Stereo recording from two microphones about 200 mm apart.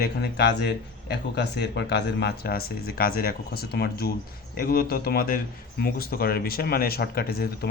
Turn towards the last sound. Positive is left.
turn(degrees=50)  # may be behind; listen again after turning